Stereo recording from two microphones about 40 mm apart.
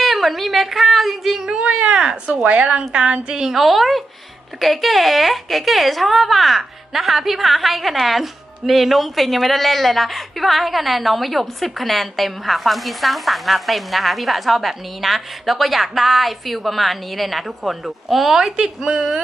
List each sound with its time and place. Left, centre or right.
0.0 s speech: centre
1.8 s a sound: right
2.3 s a woman's voice: right
3.4 s speech: centre
18.9 s a woman's voice: right